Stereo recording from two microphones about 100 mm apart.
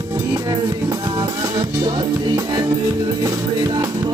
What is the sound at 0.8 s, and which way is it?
Music, 40° right (ahead or behind).